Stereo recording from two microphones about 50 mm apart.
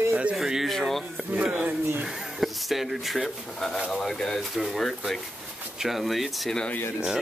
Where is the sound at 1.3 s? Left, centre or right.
Centre.